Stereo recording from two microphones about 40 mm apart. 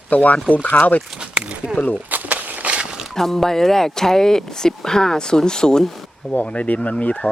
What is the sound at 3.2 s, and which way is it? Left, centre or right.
Speech, centre.